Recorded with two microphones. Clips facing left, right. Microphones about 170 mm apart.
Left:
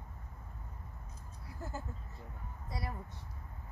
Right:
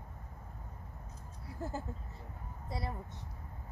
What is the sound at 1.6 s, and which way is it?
Speech, 30° right (ahead or behind).